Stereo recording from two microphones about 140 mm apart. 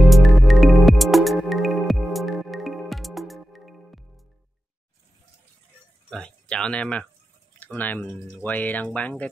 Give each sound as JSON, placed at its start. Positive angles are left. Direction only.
{"t": 0.0, "sound": "music", "side_deg": 0}
{"t": 6.0, "sound": "a sound", "side_deg": 5}
{"t": 7.5, "sound": "speech", "side_deg": 10}